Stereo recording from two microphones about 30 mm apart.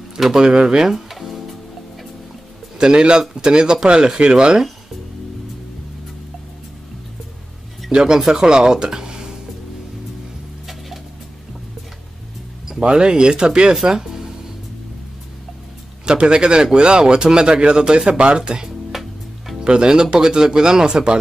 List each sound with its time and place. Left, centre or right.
0.2 s speech: centre
1.1 s music: centre
2.8 s speech: right
8.0 s speech: centre
13.0 s speech: right
13.8 s music: centre
16.1 s a man's voice: right
18.9 s music: centre
19.6 s speech: right